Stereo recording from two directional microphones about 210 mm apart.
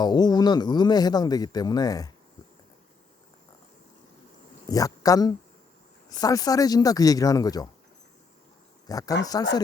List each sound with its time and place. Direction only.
0.0 s speech: 20° left (ahead or behind)
4.7 s speech: 15° left (ahead or behind)
8.9 s speech: 15° left (ahead or behind)